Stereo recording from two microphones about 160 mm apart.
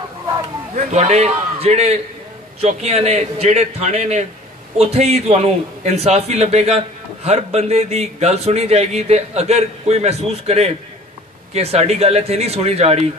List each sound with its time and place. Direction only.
0.7 s a man's voice: 40° right (ahead or behind)